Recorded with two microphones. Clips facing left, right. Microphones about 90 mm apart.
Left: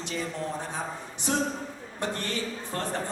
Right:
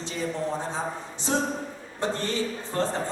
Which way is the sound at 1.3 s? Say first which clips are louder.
Right 2 dB; 25° right (ahead or behind).